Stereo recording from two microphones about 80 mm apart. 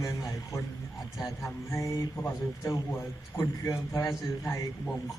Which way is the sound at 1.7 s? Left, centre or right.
Left.